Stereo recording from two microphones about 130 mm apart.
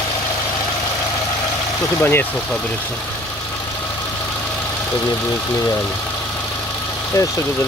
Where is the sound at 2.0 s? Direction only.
15° left (ahead or behind).